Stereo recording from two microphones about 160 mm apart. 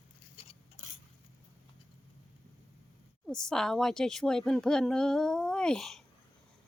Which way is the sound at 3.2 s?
5° left (ahead or behind).